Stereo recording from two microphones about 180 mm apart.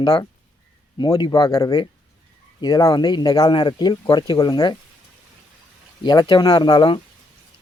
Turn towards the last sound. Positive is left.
turn(degrees=25)  # may be behind; listen again after turning